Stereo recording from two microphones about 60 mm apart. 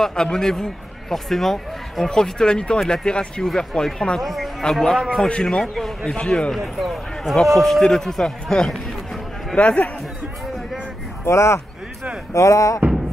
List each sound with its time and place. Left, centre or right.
0.0 s speech: centre
4.2 s a man's voice: centre
5.3 s a man's voice: centre
9.6 s a man's voice: left
11.2 s speech: left